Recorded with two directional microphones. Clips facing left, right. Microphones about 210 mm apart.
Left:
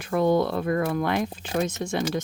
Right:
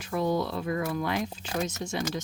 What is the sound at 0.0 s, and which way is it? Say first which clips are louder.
Speech: left 6 dB; 60° left (ahead or behind).